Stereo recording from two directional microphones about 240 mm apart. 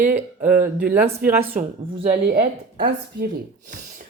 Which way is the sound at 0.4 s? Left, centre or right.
Centre.